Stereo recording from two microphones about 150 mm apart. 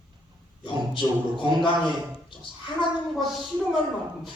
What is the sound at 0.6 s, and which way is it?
A man's voice, 35° left (ahead or behind).